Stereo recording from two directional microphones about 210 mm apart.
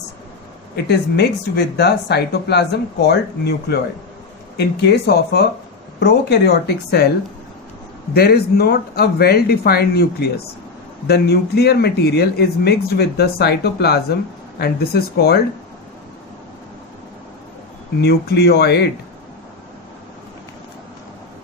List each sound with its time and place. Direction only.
0.9 s speech: 50° left (ahead or behind)
8.1 s speech: 50° left (ahead or behind)
18.0 s speech: 50° left (ahead or behind)